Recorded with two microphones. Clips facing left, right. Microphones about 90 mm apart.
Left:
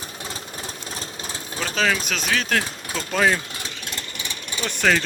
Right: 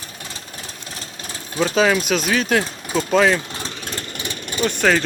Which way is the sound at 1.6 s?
10° right (ahead or behind).